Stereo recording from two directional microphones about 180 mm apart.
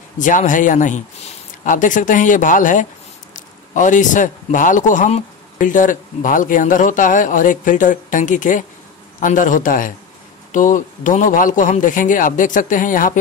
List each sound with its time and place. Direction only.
0.2 s a man's voice: 45° left (ahead or behind)